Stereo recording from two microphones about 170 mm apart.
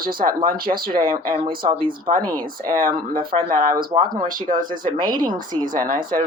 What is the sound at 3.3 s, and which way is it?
Speech, 30° right (ahead or behind).